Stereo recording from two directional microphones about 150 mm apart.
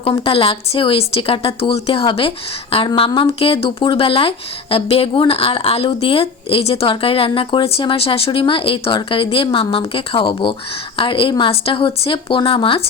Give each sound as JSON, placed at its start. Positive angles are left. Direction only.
{"t": 0.0, "sound": "speech", "side_deg": 35}